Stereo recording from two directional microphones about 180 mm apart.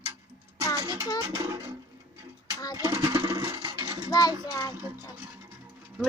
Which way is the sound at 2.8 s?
15° right (ahead or behind).